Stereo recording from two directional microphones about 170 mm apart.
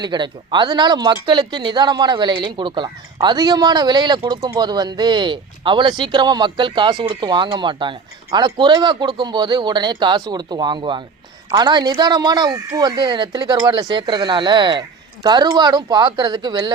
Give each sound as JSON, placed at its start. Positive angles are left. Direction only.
{"t": 0.0, "sound": "speech", "side_deg": -25}